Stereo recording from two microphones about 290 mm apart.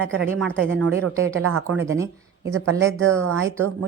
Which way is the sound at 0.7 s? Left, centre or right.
Right.